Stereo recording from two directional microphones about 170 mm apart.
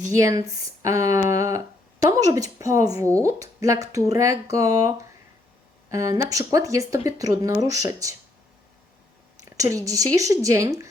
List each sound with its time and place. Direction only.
0.1 s speech: 20° right (ahead or behind)
9.4 s speech: 20° right (ahead or behind)